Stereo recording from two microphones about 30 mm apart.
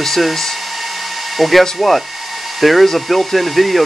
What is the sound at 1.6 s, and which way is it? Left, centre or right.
Speech, centre.